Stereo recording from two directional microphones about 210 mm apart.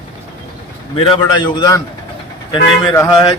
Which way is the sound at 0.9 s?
20° left (ahead or behind).